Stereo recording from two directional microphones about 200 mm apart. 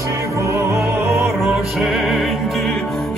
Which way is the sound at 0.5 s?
15° right (ahead or behind).